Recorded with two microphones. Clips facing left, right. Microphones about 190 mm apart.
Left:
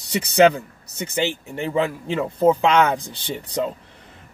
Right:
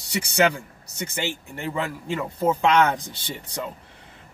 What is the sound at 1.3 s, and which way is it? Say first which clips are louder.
Speech: left 5 dB; 20° left (ahead or behind).